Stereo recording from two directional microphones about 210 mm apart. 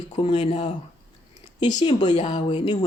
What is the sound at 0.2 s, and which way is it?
Speech, 25° left (ahead or behind).